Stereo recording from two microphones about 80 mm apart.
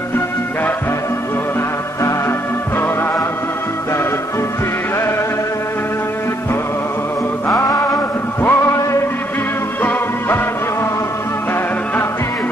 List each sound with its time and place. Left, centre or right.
7.4 s music: left
8.4 s music: left
9.8 s music: left